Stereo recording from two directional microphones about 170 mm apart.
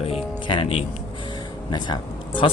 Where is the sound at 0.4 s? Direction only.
30° left (ahead or behind).